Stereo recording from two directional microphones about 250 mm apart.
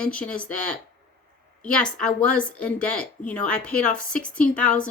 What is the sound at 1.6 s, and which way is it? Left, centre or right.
Speech, centre.